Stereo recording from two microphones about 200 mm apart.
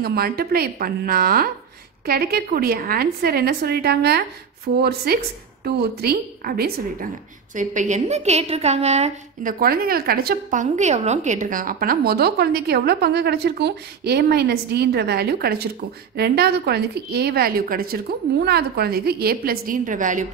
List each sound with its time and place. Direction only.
0.0 s a woman's voice: 50° right (ahead or behind)
7.5 s a woman's voice: 40° right (ahead or behind)